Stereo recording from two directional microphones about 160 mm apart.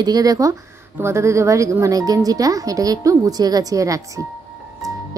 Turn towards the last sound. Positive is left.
turn(degrees=-20)  # may be behind; listen again after turning